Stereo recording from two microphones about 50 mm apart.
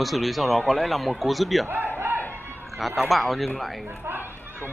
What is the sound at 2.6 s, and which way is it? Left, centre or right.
A man's voice, centre.